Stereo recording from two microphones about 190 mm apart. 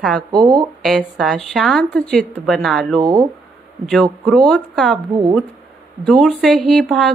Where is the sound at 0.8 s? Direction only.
Centre (ahead or behind).